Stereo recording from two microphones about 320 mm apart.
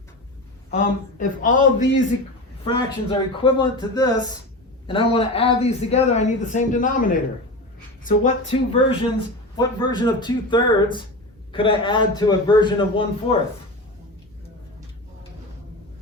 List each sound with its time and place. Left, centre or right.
0.7 s a man's voice: left